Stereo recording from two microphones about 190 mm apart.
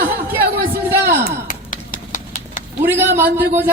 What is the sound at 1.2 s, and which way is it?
Sigh, 45° left (ahead or behind).